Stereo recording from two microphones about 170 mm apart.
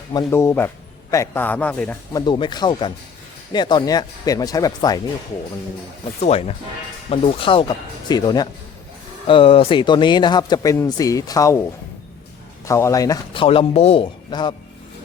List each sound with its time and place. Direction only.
0.1 s speech: 20° left (ahead or behind)
2.1 s a man's voice: 25° left (ahead or behind)
6.1 s a man's voice: 40° left (ahead or behind); by 11.6 s 20° left (ahead or behind)
12.6 s a man's voice: 15° left (ahead or behind)